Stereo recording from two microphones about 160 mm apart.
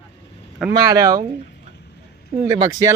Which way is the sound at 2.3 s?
30° right (ahead or behind).